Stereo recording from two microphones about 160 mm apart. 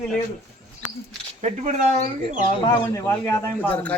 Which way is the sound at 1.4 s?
45° right (ahead or behind).